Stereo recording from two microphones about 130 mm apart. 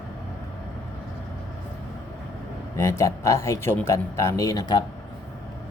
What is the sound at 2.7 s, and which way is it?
Speech, 20° left (ahead or behind).